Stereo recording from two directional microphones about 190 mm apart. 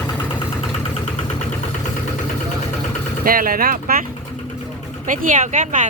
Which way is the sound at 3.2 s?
50° right (ahead or behind).